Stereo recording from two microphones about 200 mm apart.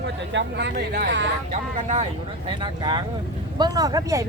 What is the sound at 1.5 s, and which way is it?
Speech, 35° right (ahead or behind).